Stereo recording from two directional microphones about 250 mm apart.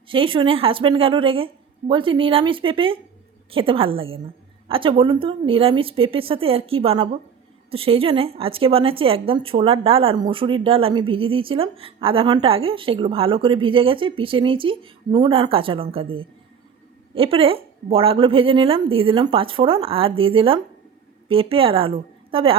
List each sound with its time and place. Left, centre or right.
0.1 s a woman's voice: right